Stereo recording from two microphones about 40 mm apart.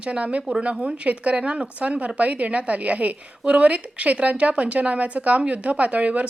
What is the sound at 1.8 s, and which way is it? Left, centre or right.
A woman's voice, right.